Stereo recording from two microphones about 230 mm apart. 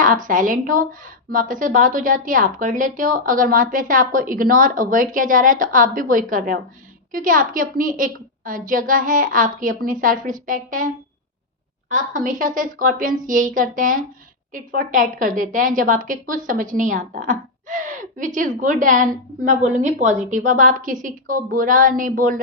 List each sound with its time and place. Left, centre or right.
0.0 s a woman's voice: right